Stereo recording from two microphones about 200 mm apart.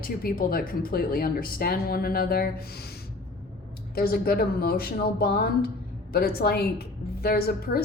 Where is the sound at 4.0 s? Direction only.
50° left (ahead or behind).